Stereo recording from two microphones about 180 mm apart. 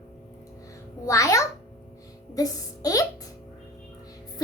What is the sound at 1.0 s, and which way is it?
A child's voice, 15° left (ahead or behind).